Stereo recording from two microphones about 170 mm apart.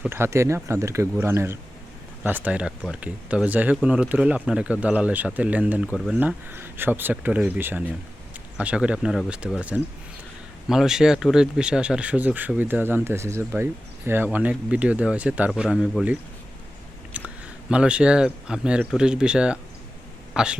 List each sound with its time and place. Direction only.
0.1 s speech: 15° right (ahead or behind)
17.2 s speech: 10° right (ahead or behind)